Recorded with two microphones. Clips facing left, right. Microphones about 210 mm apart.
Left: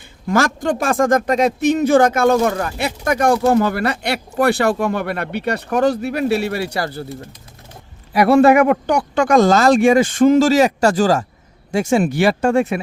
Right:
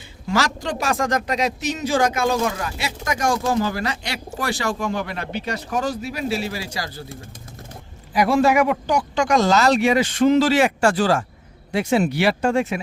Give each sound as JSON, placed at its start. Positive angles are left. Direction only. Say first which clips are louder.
{"t": 0.3, "sound": "speech", "louder": "left 6 dB", "side_deg": 50}
{"t": 8.1, "sound": "speech", "louder": "left 6 dB", "side_deg": 65}